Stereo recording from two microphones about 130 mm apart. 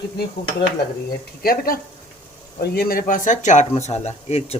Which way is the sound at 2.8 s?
90° left.